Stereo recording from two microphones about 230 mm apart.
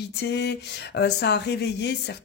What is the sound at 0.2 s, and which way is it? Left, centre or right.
Speech, left.